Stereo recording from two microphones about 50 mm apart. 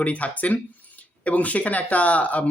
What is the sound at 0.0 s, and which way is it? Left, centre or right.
Speech, left.